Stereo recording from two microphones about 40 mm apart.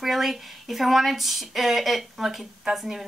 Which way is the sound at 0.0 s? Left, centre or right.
Centre.